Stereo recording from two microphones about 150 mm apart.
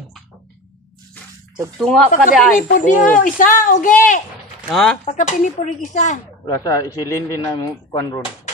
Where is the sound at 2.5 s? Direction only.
60° left (ahead or behind).